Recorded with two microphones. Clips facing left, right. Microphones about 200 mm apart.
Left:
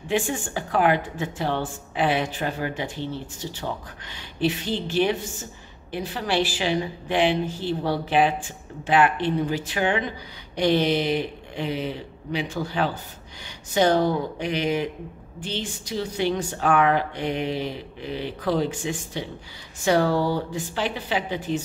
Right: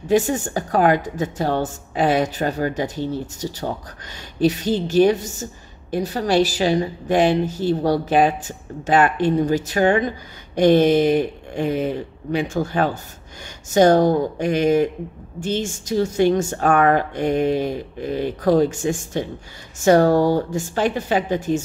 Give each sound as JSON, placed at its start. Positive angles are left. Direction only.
{"t": 0.1, "sound": "a woman's voice", "side_deg": -40}